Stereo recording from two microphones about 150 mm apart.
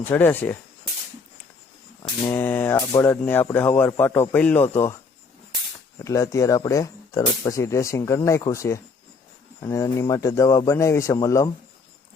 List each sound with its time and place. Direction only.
0.1 s a man's voice: 15° left (ahead or behind)
2.0 s a man's voice: 15° left (ahead or behind)
6.1 s speech: 20° left (ahead or behind)